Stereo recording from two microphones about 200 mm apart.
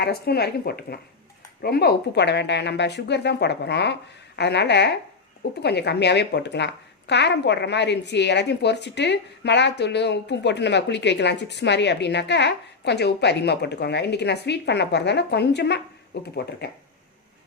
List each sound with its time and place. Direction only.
0.0 s speech: 50° left (ahead or behind)